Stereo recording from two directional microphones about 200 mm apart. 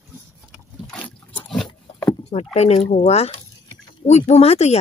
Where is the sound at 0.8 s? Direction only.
5° left (ahead or behind).